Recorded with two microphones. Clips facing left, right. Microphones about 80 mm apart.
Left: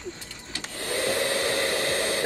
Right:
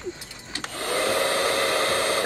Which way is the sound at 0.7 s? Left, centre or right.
Right.